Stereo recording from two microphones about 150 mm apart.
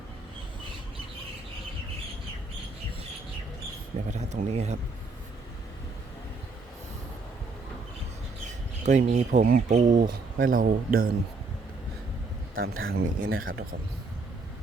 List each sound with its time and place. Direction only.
4.1 s speech: 50° right (ahead or behind)
8.9 s speech: 50° right (ahead or behind); by 11.1 s 70° right (ahead or behind)
12.5 s speech: 80° right